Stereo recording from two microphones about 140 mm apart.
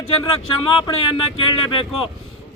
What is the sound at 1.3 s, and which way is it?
Speech, 35° left (ahead or behind).